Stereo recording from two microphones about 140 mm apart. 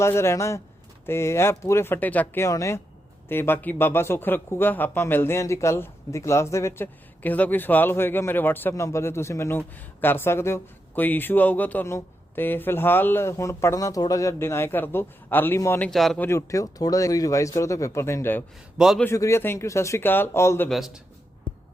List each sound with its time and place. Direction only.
0.0 s a man's voice: 20° left (ahead or behind)
15.9 s a man's voice: centre (ahead or behind)
16.2 s speech: 20° left (ahead or behind)
18.8 s a man's voice: centre (ahead or behind)
19.0 s speech: 20° left (ahead or behind)
20.7 s a man's voice: centre (ahead or behind)